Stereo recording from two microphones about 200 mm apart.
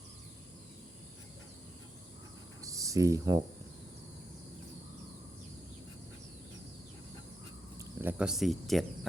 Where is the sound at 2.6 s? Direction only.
15° right (ahead or behind).